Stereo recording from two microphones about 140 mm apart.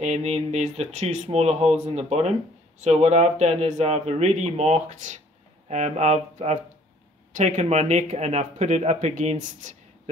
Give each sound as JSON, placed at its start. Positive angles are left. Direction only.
{"t": 0.0, "sound": "speech", "side_deg": -50}